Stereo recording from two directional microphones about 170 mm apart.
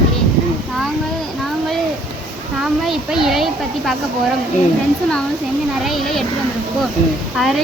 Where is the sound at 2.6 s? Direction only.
5° right (ahead or behind).